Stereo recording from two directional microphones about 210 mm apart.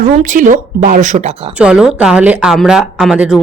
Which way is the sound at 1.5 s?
5° right (ahead or behind).